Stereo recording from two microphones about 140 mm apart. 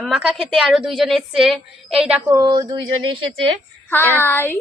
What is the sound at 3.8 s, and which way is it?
Child singing, 15° left (ahead or behind).